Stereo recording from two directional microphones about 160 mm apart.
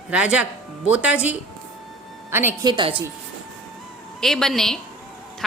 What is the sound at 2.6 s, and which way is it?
Speech, 30° right (ahead or behind).